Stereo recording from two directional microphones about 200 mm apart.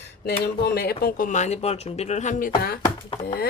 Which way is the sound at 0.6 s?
50° left (ahead or behind).